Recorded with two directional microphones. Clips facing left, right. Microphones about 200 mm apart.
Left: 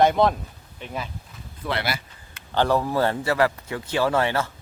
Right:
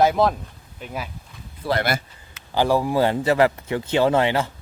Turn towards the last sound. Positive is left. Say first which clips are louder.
# right 3 dB
turn(degrees=-15)  # may be behind; listen again after turning